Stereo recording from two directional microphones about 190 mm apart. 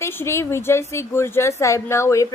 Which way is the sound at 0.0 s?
15° left (ahead or behind).